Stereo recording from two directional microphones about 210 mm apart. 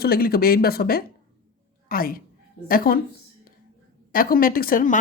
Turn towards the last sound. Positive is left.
turn(degrees=40)  # may be behind; listen again after turning